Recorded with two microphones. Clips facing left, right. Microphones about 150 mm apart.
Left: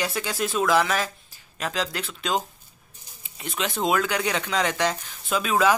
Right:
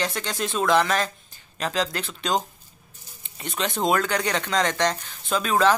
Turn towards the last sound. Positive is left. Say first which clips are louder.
# right 1 dB
turn(degrees=5)  # may be behind; listen again after turning